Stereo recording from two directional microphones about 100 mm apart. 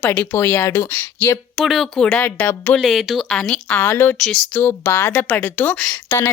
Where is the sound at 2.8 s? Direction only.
Centre (ahead or behind).